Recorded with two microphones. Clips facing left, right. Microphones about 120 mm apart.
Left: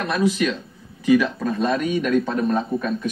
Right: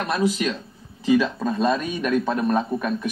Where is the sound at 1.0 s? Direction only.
25° right (ahead or behind).